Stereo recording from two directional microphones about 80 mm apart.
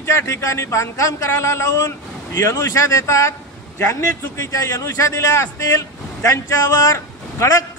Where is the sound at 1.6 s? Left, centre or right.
Left.